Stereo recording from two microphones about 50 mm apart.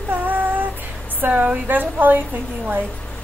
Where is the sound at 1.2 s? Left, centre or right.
Right.